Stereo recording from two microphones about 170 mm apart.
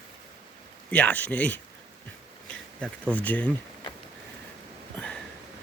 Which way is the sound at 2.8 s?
10° left (ahead or behind).